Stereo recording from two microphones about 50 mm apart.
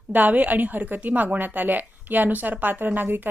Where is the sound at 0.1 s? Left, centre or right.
Right.